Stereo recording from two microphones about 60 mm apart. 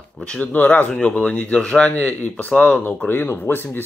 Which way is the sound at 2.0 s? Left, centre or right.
Left.